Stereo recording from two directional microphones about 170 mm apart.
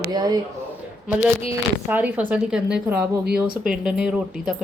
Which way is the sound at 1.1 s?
10° right (ahead or behind).